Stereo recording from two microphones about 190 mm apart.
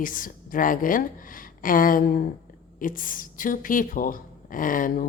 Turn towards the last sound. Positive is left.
turn(degrees=45)  # may be behind; listen again after turning